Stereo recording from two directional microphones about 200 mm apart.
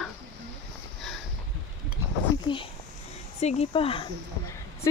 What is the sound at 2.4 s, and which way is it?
Speech, 25° left (ahead or behind).